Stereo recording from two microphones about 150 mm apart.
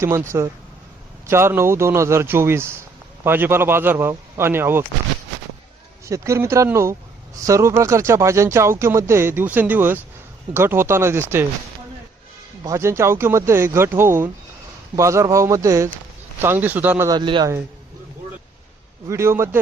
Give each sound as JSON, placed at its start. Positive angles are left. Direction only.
{"t": 0.0, "sound": "speech", "side_deg": -20}
{"t": 6.1, "sound": "speech", "side_deg": -20}
{"t": 12.6, "sound": "speech", "side_deg": -20}
{"t": 17.1, "sound": "speech", "side_deg": -30}
{"t": 19.0, "sound": "speech", "side_deg": -20}